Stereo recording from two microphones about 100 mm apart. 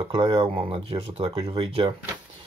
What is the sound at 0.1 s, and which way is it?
Speech, 55° right (ahead or behind).